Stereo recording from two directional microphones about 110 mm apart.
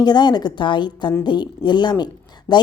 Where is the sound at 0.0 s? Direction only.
40° left (ahead or behind).